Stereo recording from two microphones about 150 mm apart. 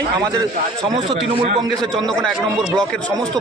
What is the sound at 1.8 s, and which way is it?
Speech, 5° left (ahead or behind).